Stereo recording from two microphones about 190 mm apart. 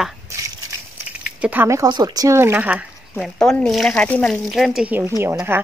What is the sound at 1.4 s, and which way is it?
Speech, 10° right (ahead or behind).